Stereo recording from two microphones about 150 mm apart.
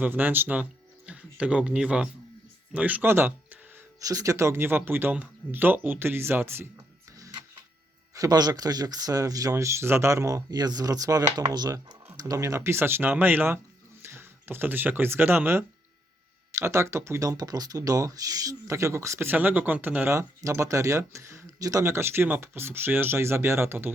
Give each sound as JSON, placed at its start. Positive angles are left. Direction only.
{"t": 0.0, "sound": "speech", "side_deg": -10}
{"t": 8.1, "sound": "speech", "side_deg": -25}